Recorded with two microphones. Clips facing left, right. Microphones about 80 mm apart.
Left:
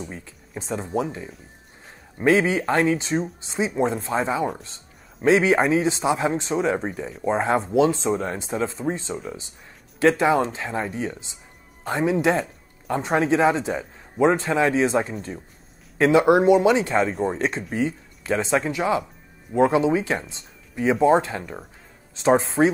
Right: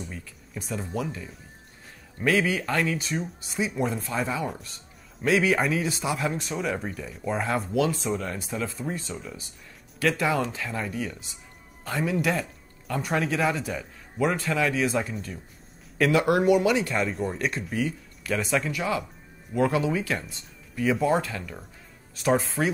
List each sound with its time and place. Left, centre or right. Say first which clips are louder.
0.1 s speech: left 3 dB; left